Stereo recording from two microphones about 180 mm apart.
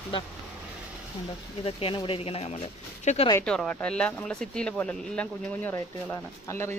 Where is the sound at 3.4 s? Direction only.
5° left (ahead or behind).